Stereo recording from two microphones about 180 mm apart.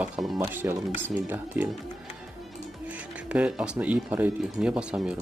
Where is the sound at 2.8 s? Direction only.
10° right (ahead or behind).